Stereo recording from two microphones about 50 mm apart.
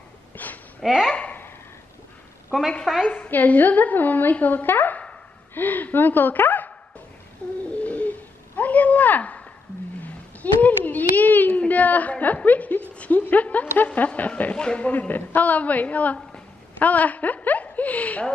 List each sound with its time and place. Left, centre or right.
0.4 s a child's voice: left
0.8 s speech: centre
2.8 s speech: centre
3.1 s a child's voice: left
7.7 s a sound: left
10.0 s a child's voice: left
14.5 s speech: centre
14.9 s a child's voice: left